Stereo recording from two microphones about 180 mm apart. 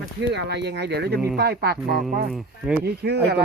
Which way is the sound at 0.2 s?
70° right (ahead or behind).